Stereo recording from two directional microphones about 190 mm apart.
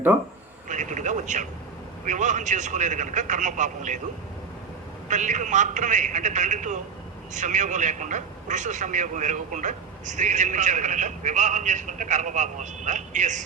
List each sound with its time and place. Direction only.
0.7 s a man's voice: 40° right (ahead or behind)
5.0 s a man's voice: 40° right (ahead or behind)